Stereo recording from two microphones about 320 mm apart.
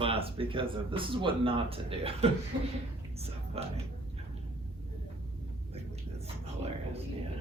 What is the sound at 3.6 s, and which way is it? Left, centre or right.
Speech, centre.